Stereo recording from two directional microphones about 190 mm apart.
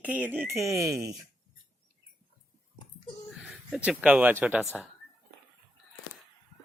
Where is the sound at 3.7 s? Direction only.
5° right (ahead or behind).